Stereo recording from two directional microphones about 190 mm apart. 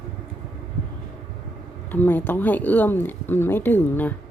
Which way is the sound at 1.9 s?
10° left (ahead or behind).